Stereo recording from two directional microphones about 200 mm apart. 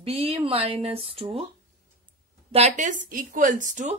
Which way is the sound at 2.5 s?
35° right (ahead or behind).